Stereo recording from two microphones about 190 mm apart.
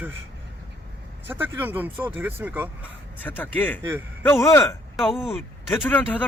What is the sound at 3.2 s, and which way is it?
A man's voice, 10° left (ahead or behind).